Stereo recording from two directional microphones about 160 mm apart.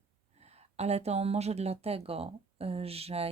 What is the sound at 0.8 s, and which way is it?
Speech, 40° right (ahead or behind).